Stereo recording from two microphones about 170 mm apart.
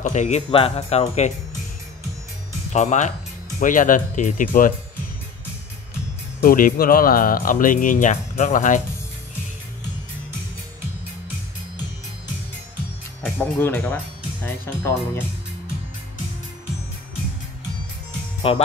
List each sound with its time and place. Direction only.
0.0 s speech: 45° left (ahead or behind)
2.7 s speech: 45° left (ahead or behind)
6.4 s speech: 55° left (ahead or behind)
13.2 s speech: 10° left (ahead or behind)
18.5 s speech: 30° left (ahead or behind)